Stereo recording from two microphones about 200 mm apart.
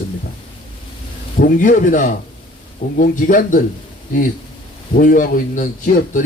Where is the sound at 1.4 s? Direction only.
40° left (ahead or behind).